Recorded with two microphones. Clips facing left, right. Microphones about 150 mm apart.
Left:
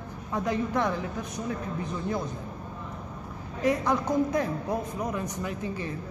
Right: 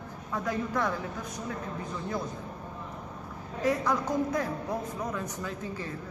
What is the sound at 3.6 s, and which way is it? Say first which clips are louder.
A man's voice: left 2 dB; 20° left (ahead or behind).